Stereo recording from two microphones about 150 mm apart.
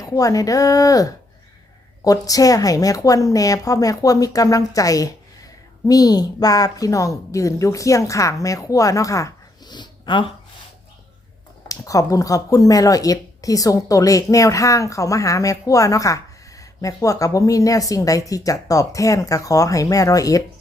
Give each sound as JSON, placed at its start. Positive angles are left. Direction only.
{"t": 0.0, "sound": "speech", "side_deg": 20}
{"t": 11.7, "sound": "speech", "side_deg": 20}